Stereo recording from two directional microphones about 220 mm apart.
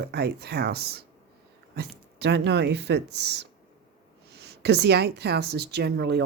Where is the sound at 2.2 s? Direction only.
50° right (ahead or behind).